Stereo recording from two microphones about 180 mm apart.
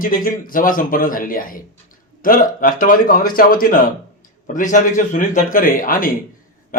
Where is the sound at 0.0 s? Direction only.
50° left (ahead or behind).